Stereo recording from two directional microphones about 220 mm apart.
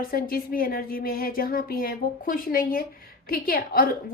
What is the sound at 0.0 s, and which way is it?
A woman's voice, 40° left (ahead or behind).